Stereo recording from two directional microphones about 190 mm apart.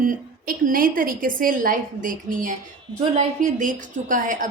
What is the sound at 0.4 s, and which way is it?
A woman's voice, 50° right (ahead or behind).